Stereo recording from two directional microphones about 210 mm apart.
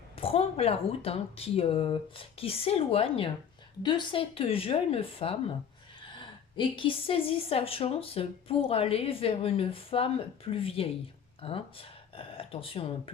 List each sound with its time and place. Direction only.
0.2 s a woman's voice: 25° left (ahead or behind)